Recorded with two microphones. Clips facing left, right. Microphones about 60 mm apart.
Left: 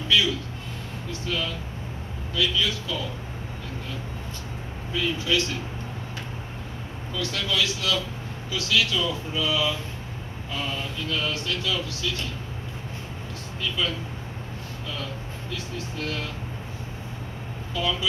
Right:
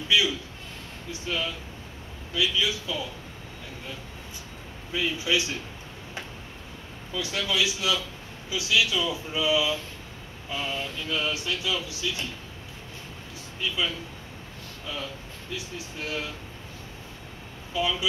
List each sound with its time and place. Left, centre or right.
0.1 s speech: centre
4.9 s speech: centre
7.2 s speech: centre
13.6 s speech: centre
15.5 s speech: centre
17.8 s speech: centre